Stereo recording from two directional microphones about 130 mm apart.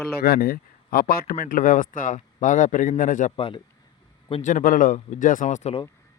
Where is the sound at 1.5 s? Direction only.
90° left.